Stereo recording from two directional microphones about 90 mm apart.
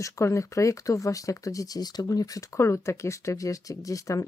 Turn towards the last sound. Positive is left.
turn(degrees=35)  # may be behind; listen again after turning